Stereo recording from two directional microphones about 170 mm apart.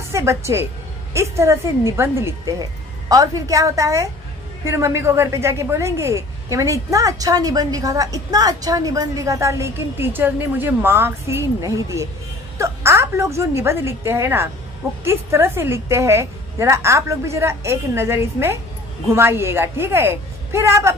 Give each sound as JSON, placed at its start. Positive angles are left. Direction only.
{"t": 0.1, "sound": "a woman's voice", "side_deg": -15}